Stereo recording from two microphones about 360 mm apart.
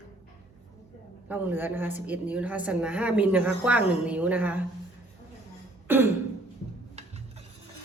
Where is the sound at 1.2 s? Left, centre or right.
Centre.